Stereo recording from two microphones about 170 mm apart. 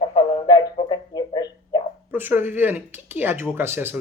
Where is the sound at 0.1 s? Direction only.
25° left (ahead or behind).